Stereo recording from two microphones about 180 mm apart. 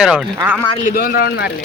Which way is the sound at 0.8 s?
50° left (ahead or behind).